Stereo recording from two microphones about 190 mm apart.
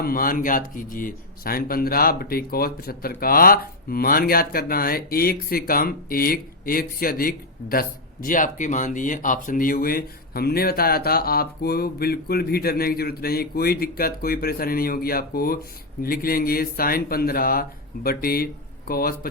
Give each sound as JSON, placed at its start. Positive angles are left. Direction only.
{"t": 0.0, "sound": "speech", "side_deg": 50}